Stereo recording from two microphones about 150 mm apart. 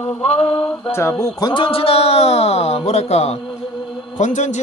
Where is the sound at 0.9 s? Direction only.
20° left (ahead or behind).